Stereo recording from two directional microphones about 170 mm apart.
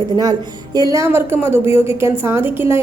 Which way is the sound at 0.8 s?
20° right (ahead or behind).